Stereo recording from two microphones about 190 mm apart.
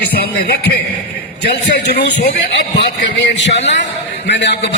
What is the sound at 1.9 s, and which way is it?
A woman's voice, 55° left (ahead or behind).